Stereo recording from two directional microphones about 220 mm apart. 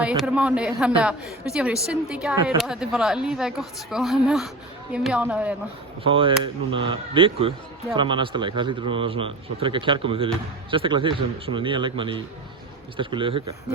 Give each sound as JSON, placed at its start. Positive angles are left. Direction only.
{"t": 0.2, "sound": "a woman's voice", "side_deg": -5}
{"t": 6.0, "sound": "a man's voice", "side_deg": -25}